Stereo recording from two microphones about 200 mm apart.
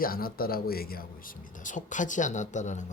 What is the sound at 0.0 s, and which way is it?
Speech, 45° left (ahead or behind).